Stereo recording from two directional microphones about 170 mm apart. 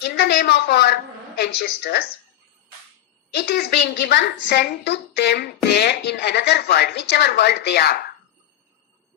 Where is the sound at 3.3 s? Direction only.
65° left (ahead or behind).